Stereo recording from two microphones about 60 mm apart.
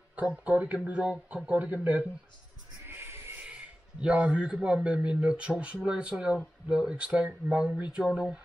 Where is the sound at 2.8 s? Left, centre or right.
Right.